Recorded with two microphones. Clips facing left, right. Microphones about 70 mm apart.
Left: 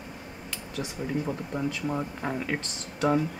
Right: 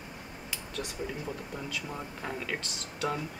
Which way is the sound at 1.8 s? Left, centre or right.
Left.